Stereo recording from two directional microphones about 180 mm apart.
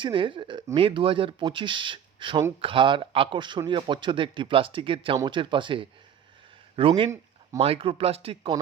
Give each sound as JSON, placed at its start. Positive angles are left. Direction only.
{"t": 0.0, "sound": "speech", "side_deg": -25}